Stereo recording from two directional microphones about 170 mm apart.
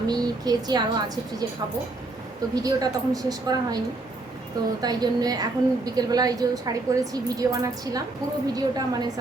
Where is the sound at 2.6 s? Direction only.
20° right (ahead or behind).